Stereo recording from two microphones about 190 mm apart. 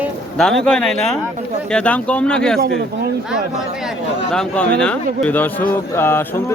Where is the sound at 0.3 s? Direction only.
Centre (ahead or behind).